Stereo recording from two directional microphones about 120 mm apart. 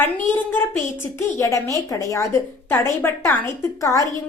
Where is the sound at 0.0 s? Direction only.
15° left (ahead or behind).